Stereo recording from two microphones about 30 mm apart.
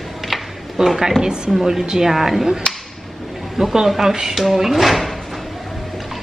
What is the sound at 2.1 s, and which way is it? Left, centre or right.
Speech, centre.